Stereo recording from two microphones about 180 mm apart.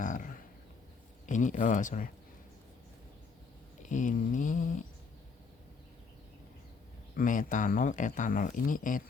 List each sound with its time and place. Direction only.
0.0 s a sound: 45° left (ahead or behind)
1.3 s speech: 45° left (ahead or behind)
3.8 s speech: 45° left (ahead or behind)
7.2 s speech: 45° left (ahead or behind)